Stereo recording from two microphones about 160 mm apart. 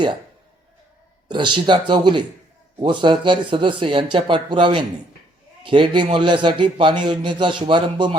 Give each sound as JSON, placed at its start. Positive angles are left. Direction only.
{"t": 1.3, "sound": "a man's voice", "side_deg": -30}